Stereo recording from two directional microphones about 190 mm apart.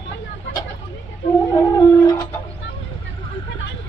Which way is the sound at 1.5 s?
20° left (ahead or behind).